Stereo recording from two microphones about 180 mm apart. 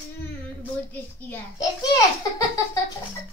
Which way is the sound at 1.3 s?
20° left (ahead or behind).